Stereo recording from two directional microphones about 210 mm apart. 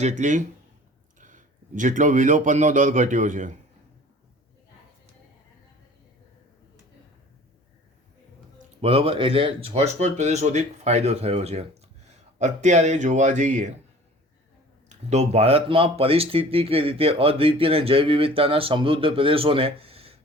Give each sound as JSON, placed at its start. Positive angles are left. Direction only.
{"t": 0.0, "sound": "a man's voice", "side_deg": -35}
{"t": 8.8, "sound": "speech", "side_deg": -30}
{"t": 14.8, "sound": "speech", "side_deg": -30}